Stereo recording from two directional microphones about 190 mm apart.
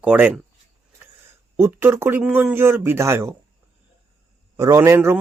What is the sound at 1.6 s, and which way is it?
A man's voice, 10° right (ahead or behind).